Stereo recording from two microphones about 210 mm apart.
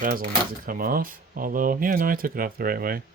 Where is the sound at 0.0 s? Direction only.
40° right (ahead or behind).